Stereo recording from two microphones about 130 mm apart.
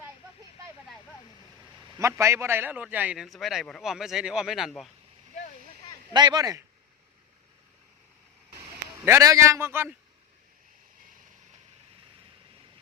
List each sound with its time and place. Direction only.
2.0 s a man's voice: 20° right (ahead or behind)
3.2 s speech: centre (ahead or behind)
6.1 s a man's voice: 30° right (ahead or behind)
9.0 s a man's voice: 20° right (ahead or behind)